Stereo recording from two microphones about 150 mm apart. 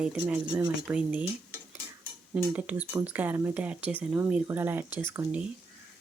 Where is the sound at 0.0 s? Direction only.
5° right (ahead or behind).